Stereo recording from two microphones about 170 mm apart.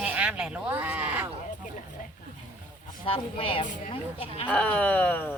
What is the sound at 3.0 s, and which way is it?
Speech, 35° left (ahead or behind).